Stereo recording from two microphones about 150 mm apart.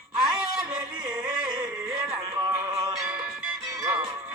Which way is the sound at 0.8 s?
25° right (ahead or behind).